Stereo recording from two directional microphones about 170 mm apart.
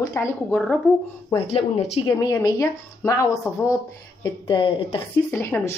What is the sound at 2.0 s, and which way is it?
A woman's voice, 20° left (ahead or behind).